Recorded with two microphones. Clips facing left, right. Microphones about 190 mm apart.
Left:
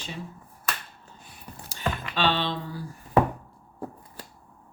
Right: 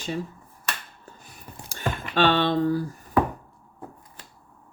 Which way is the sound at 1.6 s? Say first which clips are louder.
Right 1 dB; 50° right (ahead or behind).